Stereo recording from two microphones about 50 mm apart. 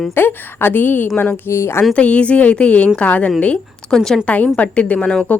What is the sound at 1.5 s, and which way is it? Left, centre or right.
Speech, left.